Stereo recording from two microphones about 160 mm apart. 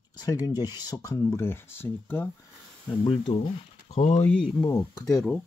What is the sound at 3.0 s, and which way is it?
Speech, 35° left (ahead or behind).